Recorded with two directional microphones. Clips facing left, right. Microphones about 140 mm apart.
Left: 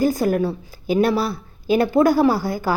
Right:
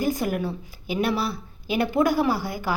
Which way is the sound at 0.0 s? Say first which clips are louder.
Left 6 dB; 35° left (ahead or behind).